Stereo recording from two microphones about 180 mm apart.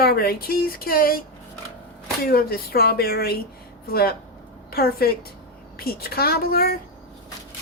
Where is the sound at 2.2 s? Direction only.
60° left (ahead or behind).